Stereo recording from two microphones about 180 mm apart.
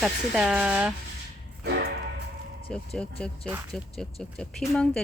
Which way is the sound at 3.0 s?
5° left (ahead or behind).